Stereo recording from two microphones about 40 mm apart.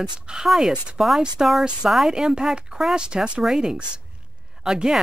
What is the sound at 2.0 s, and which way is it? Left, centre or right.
Speech, centre.